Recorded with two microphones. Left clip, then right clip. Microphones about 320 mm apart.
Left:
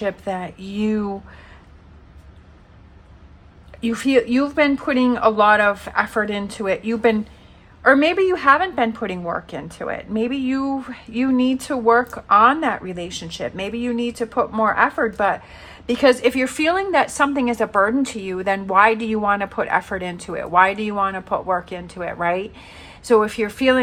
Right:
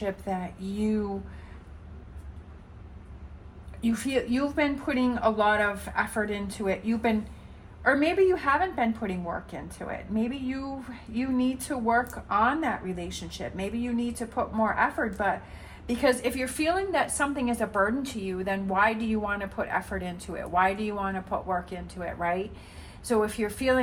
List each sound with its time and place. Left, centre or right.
0.3 s a woman's voice: left
3.8 s a woman's voice: left